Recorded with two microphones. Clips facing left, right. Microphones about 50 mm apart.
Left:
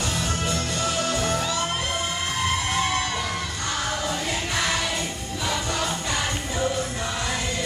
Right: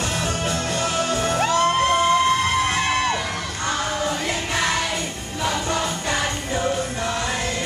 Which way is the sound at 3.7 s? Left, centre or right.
Right.